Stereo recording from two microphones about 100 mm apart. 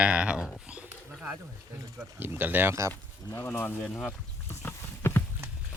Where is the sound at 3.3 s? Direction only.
25° left (ahead or behind).